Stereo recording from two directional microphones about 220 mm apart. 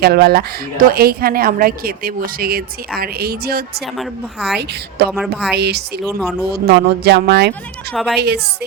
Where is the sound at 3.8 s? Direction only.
Centre (ahead or behind).